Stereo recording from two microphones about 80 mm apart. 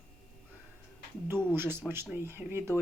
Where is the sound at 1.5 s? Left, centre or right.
Right.